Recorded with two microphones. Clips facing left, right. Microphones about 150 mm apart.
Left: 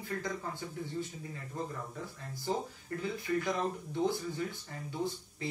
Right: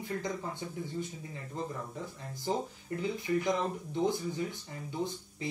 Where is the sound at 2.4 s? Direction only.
20° right (ahead or behind).